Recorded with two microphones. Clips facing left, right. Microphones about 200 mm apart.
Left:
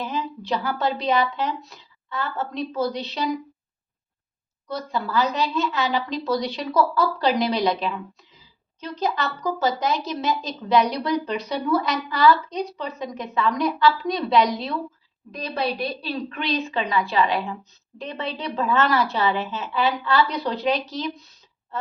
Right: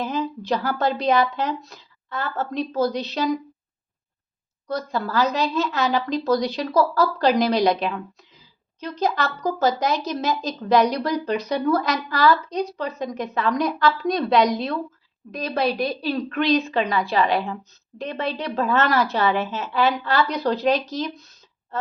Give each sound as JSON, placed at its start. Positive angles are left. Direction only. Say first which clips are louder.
{"t": 0.0, "sound": "a woman's voice", "louder": "right 3 dB", "side_deg": -45}
{"t": 4.7, "sound": "a woman's voice", "louder": "right 1 dB", "side_deg": -40}
{"t": 7.4, "sound": "a woman's voice", "louder": "right 3 dB", "side_deg": -45}